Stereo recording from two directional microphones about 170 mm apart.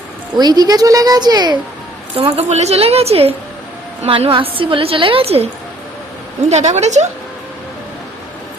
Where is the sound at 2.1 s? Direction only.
35° right (ahead or behind).